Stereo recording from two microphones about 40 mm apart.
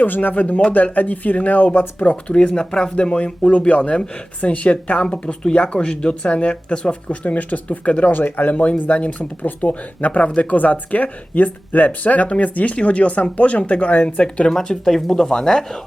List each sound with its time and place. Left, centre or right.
0.0 s a woman's voice: left
0.3 s a woman's voice: left
2.2 s speech: left
7.1 s speech: left
8.2 s a woman's voice: left
14.5 s speech: centre